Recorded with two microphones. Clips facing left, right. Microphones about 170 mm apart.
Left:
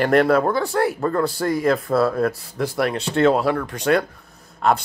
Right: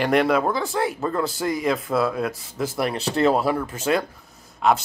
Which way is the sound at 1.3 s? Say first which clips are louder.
Left 3 dB; 20° right (ahead or behind).